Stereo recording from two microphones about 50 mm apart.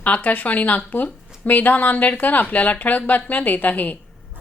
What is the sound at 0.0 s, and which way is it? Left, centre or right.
Speech, left.